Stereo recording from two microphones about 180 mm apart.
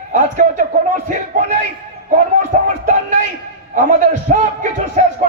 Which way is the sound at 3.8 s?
45° right (ahead or behind).